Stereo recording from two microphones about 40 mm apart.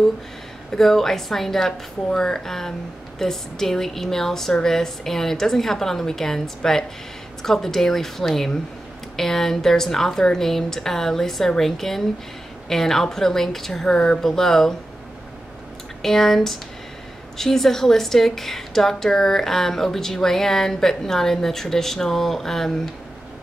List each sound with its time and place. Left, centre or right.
0.7 s a woman's voice: centre
13.8 s speech: left
14.2 s a woman's voice: centre
16.0 s a woman's voice: centre